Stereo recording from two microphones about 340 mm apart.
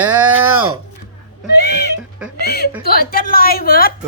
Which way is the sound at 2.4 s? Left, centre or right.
Left.